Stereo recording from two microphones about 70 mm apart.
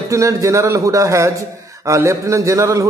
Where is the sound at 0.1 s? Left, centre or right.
Right.